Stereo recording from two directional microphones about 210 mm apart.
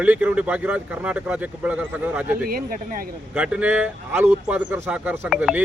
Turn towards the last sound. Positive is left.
turn(degrees=-5)  # may be behind; listen again after turning